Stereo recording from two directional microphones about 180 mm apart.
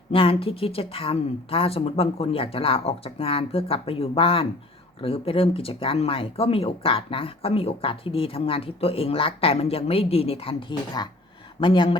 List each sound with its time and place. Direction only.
0.1 s speech: 30° left (ahead or behind)